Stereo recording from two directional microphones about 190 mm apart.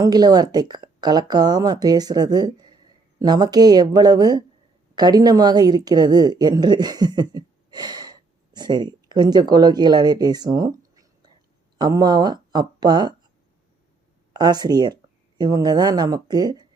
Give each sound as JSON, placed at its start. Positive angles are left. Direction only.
{"t": 0.0, "sound": "a woman's voice", "side_deg": -20}
{"t": 14.3, "sound": "speech", "side_deg": -20}